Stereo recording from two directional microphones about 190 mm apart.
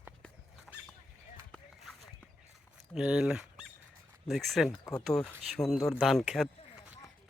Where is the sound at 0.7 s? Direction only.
5° right (ahead or behind).